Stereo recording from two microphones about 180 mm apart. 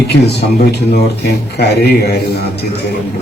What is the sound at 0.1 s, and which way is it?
A man's voice, 65° left (ahead or behind).